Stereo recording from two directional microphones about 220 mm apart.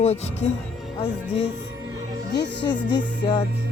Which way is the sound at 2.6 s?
20° left (ahead or behind).